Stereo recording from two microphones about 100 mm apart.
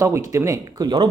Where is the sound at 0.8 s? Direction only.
50° right (ahead or behind).